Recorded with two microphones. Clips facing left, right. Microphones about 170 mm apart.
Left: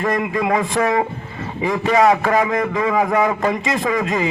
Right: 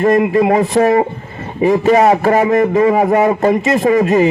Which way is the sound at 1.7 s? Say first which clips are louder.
Right 4 dB; 45° right (ahead or behind).